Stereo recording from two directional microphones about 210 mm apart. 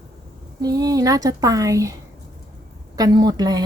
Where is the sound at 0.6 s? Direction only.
15° right (ahead or behind).